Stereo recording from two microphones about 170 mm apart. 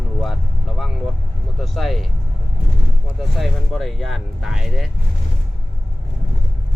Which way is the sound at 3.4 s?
Centre (ahead or behind).